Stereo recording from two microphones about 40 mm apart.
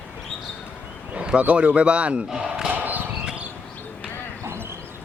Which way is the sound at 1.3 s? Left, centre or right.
Right.